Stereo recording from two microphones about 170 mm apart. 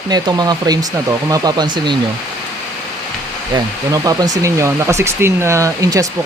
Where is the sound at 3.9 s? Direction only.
20° right (ahead or behind).